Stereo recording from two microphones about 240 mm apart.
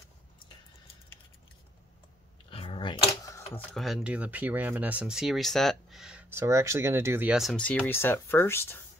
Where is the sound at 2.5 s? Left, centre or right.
Left.